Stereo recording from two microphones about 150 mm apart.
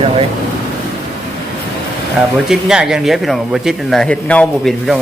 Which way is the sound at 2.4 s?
5° right (ahead or behind).